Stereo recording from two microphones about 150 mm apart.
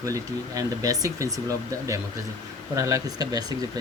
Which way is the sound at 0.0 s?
25° right (ahead or behind).